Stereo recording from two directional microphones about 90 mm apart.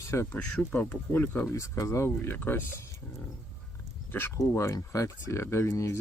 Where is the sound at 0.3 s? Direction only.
15° left (ahead or behind).